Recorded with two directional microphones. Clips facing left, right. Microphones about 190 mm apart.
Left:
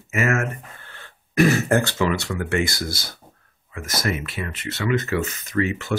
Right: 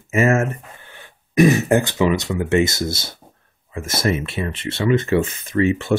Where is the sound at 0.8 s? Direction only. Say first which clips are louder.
Right 2 dB; 15° right (ahead or behind).